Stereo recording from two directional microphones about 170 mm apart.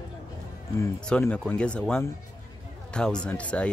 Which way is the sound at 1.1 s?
10° left (ahead or behind).